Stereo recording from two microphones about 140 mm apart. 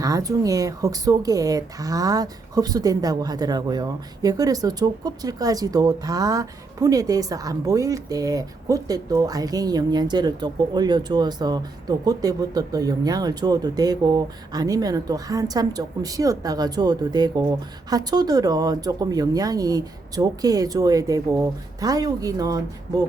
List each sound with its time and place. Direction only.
0.0 s speech: 25° right (ahead or behind)